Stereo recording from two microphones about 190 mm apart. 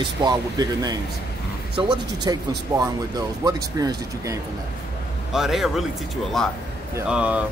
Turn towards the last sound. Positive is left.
turn(degrees=-5)  # may be behind; listen again after turning